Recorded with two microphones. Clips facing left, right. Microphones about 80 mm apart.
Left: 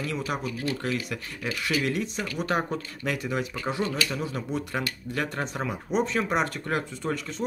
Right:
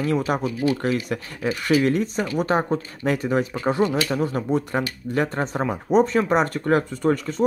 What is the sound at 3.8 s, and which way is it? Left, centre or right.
Speech, right.